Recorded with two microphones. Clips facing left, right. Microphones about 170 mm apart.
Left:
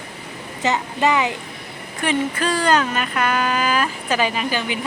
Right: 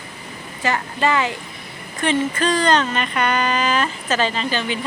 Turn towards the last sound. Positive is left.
turn(degrees=10)  # may be behind; listen again after turning